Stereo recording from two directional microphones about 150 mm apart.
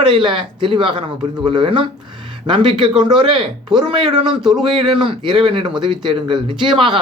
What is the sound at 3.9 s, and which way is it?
Speech, 30° right (ahead or behind).